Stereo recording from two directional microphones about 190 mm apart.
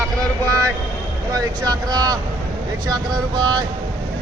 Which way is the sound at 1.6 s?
20° right (ahead or behind).